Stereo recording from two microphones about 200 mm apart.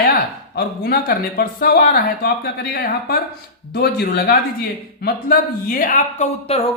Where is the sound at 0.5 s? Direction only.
50° left (ahead or behind).